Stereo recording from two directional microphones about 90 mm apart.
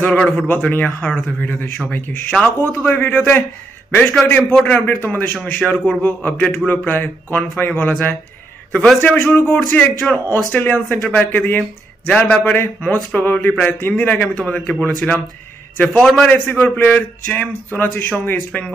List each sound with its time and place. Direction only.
0.0 s a man's voice: 10° left (ahead or behind)
4.0 s a man's voice: 5° left (ahead or behind)
4.6 s a man's voice: 20° left (ahead or behind); by 16.3 s 5° left (ahead or behind)
16.3 s a man's voice: 20° left (ahead or behind)